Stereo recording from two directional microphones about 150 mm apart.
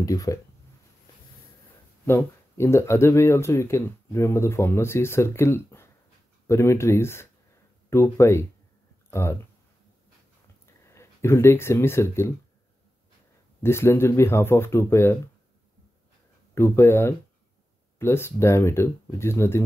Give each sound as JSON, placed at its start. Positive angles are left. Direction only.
{"t": 0.0, "sound": "speech", "side_deg": 20}
{"t": 2.0, "sound": "speech", "side_deg": 15}
{"t": 11.0, "sound": "speech", "side_deg": 20}
{"t": 13.6, "sound": "speech", "side_deg": 15}
{"t": 16.5, "sound": "speech", "side_deg": 15}